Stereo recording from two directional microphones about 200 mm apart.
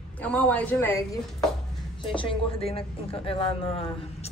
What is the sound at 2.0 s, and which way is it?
Speech, 25° left (ahead or behind).